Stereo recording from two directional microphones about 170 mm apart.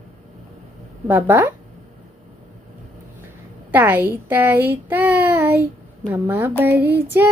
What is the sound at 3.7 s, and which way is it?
A child's voice, 10° right (ahead or behind).